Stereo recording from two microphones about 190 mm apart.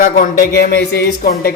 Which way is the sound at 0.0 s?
45° left (ahead or behind).